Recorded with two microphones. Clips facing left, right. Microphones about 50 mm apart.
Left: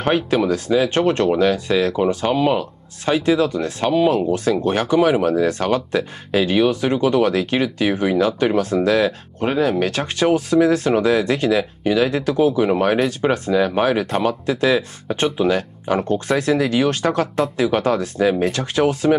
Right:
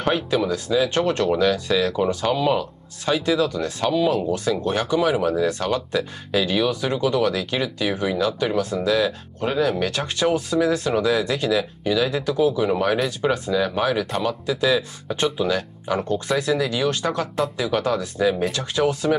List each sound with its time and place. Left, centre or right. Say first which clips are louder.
0.0 s speech: left 3 dB; left
8.5 s speech: left 3 dB; left